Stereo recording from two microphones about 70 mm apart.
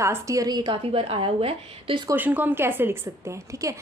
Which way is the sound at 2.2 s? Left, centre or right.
Right.